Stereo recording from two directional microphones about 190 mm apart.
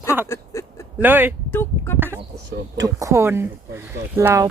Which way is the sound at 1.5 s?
10° left (ahead or behind).